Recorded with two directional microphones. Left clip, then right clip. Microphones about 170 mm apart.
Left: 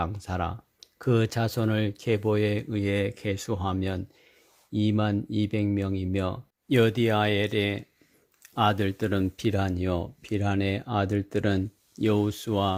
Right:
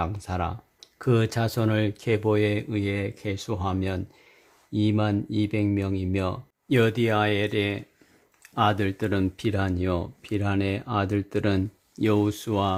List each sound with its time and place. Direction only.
0.0 s speech: 25° left (ahead or behind)